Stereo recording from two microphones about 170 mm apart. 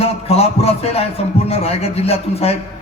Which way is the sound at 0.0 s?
35° left (ahead or behind).